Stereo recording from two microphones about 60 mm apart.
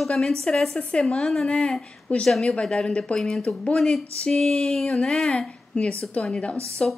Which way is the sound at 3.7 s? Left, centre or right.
Centre.